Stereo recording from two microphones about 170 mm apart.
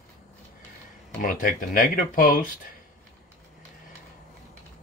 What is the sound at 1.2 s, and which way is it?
Speech, 55° left (ahead or behind).